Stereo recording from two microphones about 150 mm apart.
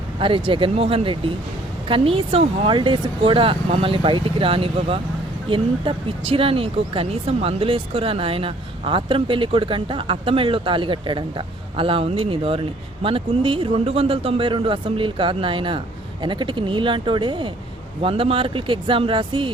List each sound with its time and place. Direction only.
0.2 s speech: 35° right (ahead or behind)